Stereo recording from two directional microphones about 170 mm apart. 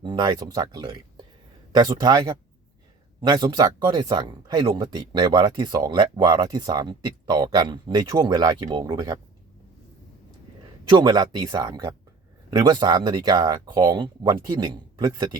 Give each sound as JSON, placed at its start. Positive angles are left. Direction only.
{"t": 0.0, "sound": "speech", "side_deg": -25}
{"t": 10.8, "sound": "speech", "side_deg": -25}